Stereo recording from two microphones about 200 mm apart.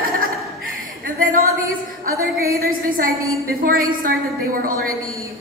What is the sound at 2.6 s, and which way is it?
A woman's voice, 45° right (ahead or behind).